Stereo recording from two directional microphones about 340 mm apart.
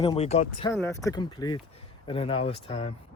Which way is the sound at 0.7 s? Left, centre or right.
Centre.